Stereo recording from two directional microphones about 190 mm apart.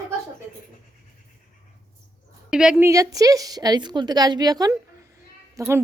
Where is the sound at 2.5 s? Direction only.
5° right (ahead or behind).